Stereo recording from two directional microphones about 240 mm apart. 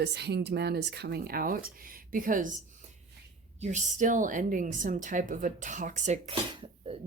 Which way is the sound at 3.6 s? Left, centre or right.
Right.